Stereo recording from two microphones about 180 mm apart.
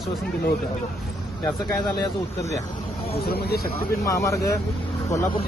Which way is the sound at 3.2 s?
60° left (ahead or behind).